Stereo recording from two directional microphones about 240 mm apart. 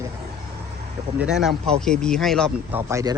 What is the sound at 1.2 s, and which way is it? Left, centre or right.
Speech, centre.